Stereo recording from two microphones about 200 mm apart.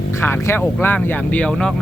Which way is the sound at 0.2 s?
10° left (ahead or behind).